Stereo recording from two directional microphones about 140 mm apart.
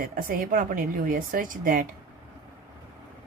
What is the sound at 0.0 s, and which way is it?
Speech, 80° right.